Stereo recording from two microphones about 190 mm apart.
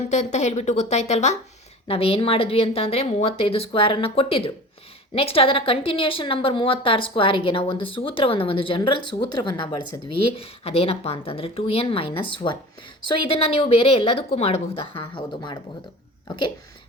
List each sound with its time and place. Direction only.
0.0 s a woman's voice: 35° left (ahead or behind)